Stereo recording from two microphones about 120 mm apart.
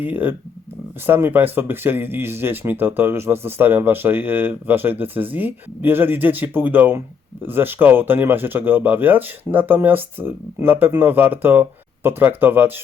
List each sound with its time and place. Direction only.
0.0 s speech: 15° right (ahead or behind)